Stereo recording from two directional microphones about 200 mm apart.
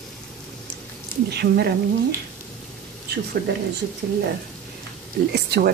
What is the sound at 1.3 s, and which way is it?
Speech, 55° right (ahead or behind).